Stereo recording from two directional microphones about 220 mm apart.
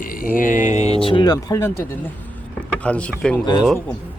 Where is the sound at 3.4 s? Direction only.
20° left (ahead or behind).